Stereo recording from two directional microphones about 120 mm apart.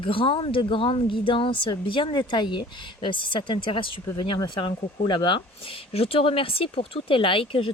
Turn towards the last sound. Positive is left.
turn(degrees=45)  # may be behind; listen again after turning